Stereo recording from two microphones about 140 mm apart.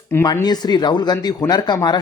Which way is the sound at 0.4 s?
30° left (ahead or behind).